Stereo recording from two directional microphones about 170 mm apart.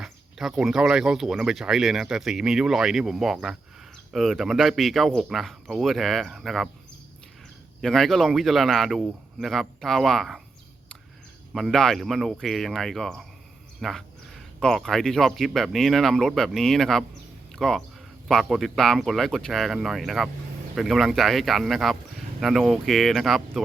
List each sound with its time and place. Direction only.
0.0 s speech: centre (ahead or behind)
7.8 s speech: centre (ahead or behind)
11.5 s speech: centre (ahead or behind)